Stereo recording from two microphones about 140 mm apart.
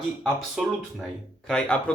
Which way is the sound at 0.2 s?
5° right (ahead or behind).